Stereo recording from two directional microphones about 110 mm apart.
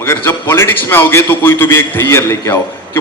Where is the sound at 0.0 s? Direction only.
20° left (ahead or behind).